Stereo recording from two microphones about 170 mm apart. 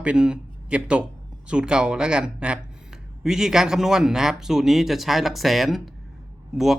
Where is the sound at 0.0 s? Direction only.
5° right (ahead or behind).